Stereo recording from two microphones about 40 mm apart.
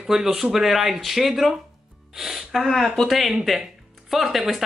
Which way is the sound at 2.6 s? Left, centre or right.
Centre.